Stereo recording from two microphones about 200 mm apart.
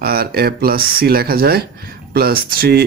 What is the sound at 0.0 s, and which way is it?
Speech, 50° right (ahead or behind).